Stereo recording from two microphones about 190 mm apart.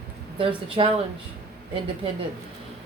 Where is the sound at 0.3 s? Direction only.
30° right (ahead or behind).